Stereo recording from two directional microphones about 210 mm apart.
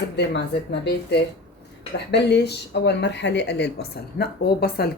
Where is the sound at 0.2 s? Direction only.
55° left (ahead or behind).